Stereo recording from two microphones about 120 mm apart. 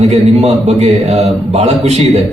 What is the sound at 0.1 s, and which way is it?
A man's voice, 60° right (ahead or behind).